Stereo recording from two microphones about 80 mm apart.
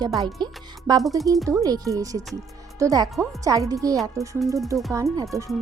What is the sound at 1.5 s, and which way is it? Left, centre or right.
Speech, right.